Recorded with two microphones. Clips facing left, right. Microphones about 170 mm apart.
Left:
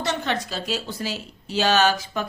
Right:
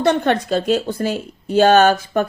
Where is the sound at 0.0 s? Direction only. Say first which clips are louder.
Right 9 dB; 55° right (ahead or behind).